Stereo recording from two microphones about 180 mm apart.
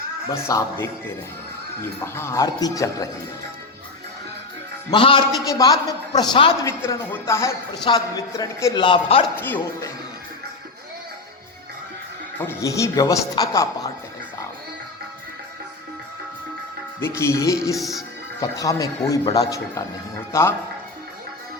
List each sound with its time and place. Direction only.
0.3 s a man's voice: 15° left (ahead or behind)
2.1 s speech: 15° left (ahead or behind)
4.9 s speech: 30° left (ahead or behind)
6.7 s a man's voice: 15° left (ahead or behind); by 9.2 s 30° left (ahead or behind)
9.3 s a man's voice: 10° left (ahead or behind)
12.4 s a man's voice: 15° left (ahead or behind)
17.0 s a man's voice: 15° left (ahead or behind)
17.7 s speech: centre (ahead or behind)
18.3 s a man's voice: 20° left (ahead or behind)